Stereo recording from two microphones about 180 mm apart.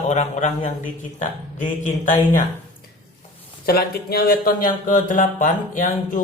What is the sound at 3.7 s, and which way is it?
Speech, 60° left (ahead or behind).